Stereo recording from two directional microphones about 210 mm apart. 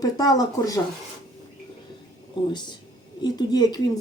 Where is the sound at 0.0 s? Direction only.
15° left (ahead or behind).